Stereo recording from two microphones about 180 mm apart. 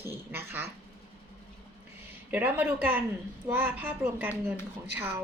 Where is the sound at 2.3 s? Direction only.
10° right (ahead or behind).